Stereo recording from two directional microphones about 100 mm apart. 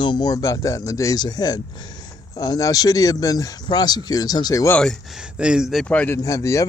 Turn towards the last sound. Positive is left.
turn(degrees=35)  # may be behind; listen again after turning